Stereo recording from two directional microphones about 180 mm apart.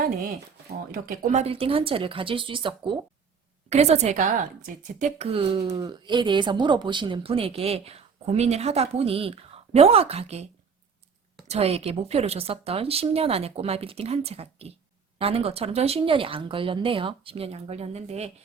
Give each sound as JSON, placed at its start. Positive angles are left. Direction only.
{"t": 0.9, "sound": "a woman's voice", "side_deg": -50}
{"t": 11.4, "sound": "a woman's voice", "side_deg": -35}